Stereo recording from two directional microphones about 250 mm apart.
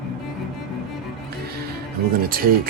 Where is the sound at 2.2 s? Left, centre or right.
Right.